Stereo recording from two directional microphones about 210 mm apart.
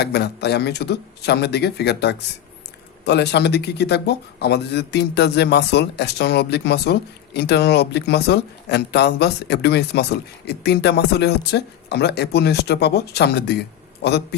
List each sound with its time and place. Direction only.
0.0 s speech: 50° left (ahead or behind)